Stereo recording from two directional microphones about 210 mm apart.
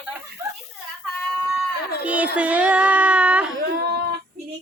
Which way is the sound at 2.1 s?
5° right (ahead or behind).